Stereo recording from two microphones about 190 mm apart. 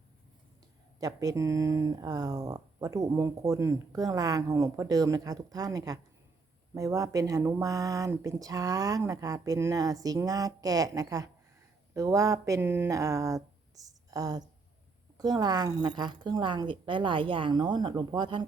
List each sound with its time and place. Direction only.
0.9 s speech: 20° right (ahead or behind)